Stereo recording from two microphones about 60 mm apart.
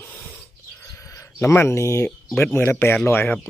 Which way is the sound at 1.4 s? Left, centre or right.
Left.